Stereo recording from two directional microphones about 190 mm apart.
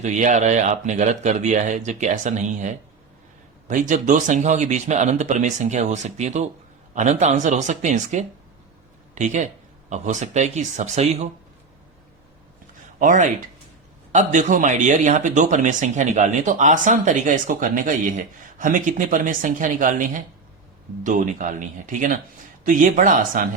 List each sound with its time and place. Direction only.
0.0 s speech: 40° right (ahead or behind)
13.0 s speech: 40° right (ahead or behind)